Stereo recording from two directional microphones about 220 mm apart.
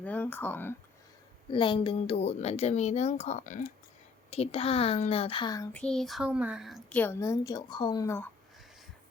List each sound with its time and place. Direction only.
0.0 s speech: 5° left (ahead or behind)
1.5 s speech: 25° left (ahead or behind)
5.7 s speech: 5° left (ahead or behind)